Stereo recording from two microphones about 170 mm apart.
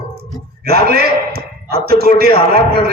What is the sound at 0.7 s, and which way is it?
A man's voice, 65° right (ahead or behind).